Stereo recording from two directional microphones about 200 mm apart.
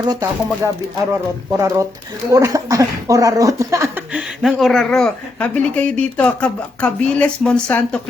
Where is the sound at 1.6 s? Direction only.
15° right (ahead or behind).